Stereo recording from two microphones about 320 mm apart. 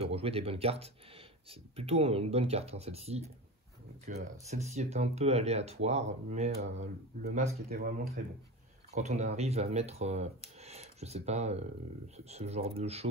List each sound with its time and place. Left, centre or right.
0.0 s speech: centre